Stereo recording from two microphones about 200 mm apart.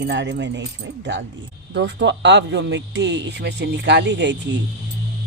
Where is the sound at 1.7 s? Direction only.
60° right (ahead or behind).